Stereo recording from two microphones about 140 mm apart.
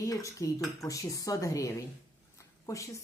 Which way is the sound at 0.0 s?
25° left (ahead or behind).